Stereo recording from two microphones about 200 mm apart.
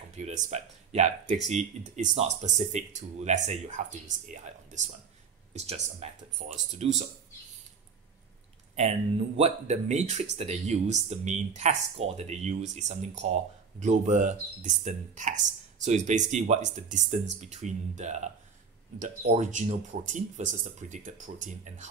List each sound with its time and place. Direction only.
0.1 s speech: 35° right (ahead or behind)
9.4 s speech: 35° right (ahead or behind)